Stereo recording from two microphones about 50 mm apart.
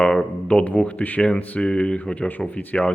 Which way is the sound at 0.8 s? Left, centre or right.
Left.